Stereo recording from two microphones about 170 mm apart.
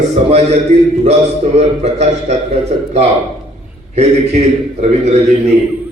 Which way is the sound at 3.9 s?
40° right (ahead or behind).